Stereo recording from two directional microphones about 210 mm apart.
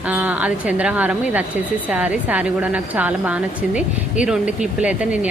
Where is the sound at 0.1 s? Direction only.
10° right (ahead or behind).